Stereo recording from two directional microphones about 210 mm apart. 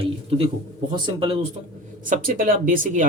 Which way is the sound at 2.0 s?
40° right (ahead or behind).